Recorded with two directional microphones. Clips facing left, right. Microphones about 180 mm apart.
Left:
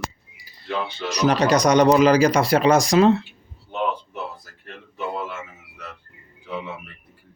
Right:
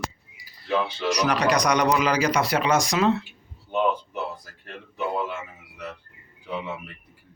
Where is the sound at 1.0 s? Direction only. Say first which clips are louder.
Left 5 dB; 25° left (ahead or behind).